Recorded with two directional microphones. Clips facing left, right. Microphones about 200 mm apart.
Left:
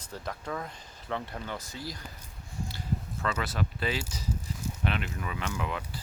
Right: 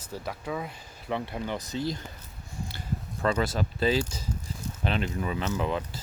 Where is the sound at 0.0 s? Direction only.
10° right (ahead or behind); by 2.0 s 25° right (ahead or behind).